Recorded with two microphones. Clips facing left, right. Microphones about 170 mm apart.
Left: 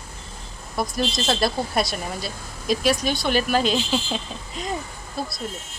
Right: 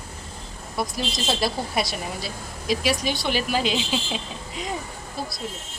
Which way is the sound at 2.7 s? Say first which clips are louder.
Left 2 dB; 50° left (ahead or behind).